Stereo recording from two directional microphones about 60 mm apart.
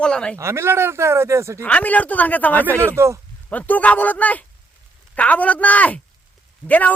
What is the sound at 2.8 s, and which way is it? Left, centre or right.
Speech, right.